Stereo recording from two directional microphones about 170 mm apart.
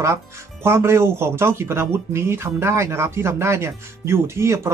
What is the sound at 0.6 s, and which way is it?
Speech, 15° right (ahead or behind).